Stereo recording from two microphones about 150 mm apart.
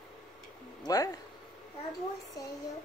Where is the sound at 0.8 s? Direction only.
25° left (ahead or behind).